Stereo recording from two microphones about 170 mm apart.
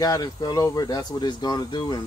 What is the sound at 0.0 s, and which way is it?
A man's voice, 25° left (ahead or behind).